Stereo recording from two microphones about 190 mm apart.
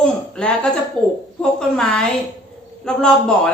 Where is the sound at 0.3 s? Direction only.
5° left (ahead or behind).